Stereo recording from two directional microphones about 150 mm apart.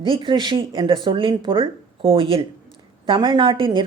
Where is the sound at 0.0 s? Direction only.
35° right (ahead or behind).